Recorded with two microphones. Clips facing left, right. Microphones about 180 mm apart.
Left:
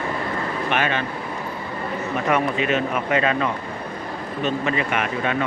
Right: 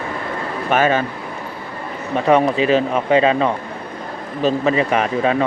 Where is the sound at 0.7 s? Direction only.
40° right (ahead or behind).